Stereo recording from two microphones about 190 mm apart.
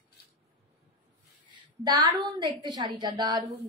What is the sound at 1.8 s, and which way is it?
A woman's voice, 20° right (ahead or behind).